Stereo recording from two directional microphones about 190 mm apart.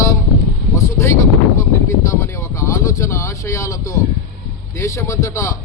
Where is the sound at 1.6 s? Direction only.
15° left (ahead or behind).